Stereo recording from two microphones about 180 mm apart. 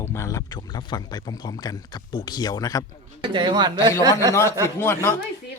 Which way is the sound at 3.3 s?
25° right (ahead or behind).